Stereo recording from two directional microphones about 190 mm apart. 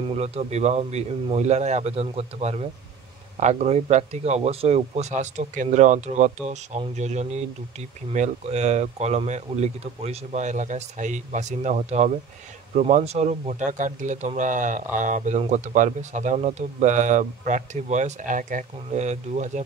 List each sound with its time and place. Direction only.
0.1 s speech: 35° right (ahead or behind)